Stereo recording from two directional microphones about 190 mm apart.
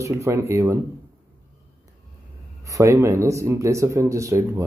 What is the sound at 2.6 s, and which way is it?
Speech, 15° right (ahead or behind).